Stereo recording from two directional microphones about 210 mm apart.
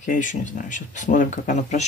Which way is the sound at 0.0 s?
35° left (ahead or behind).